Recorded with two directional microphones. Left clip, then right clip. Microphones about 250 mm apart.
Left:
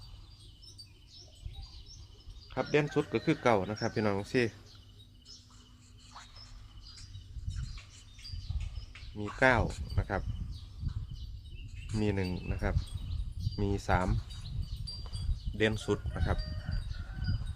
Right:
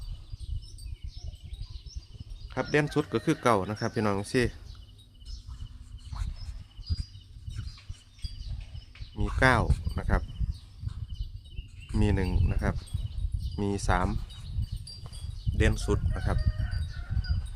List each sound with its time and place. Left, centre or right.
2.5 s speech: right
9.4 s speech: right
11.9 s speech: right
15.5 s speech: right